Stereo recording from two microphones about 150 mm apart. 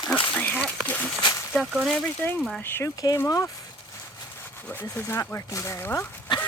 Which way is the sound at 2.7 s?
20° left (ahead or behind).